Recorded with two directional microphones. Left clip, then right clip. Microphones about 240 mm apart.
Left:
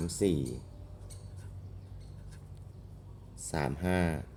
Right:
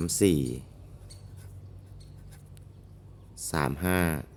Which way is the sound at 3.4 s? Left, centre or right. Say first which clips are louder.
Right 5 dB; right.